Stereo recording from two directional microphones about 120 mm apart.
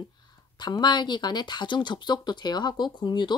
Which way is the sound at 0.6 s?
35° left (ahead or behind).